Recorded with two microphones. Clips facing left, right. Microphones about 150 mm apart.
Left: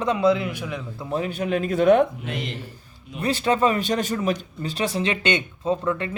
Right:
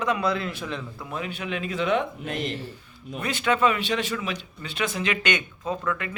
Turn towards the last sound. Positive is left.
turn(degrees=30)  # may be behind; listen again after turning